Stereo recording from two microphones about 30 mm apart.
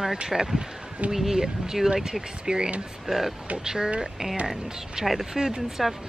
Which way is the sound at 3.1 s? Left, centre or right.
Centre.